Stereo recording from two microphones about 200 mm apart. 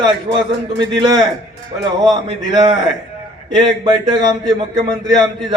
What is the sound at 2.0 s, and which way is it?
Speech, 20° right (ahead or behind).